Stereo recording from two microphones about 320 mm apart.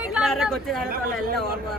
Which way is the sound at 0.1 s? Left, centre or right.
Centre.